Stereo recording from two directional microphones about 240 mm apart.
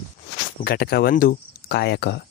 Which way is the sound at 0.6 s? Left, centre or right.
Left.